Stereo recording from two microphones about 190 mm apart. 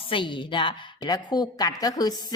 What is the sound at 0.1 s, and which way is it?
A woman's voice, 25° left (ahead or behind).